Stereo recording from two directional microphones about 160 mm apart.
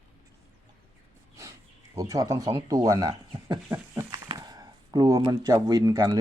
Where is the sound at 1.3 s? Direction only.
20° right (ahead or behind).